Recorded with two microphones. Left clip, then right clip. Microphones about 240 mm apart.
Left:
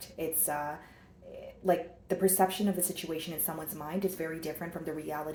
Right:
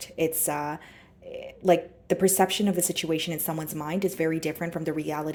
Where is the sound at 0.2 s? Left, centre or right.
Right.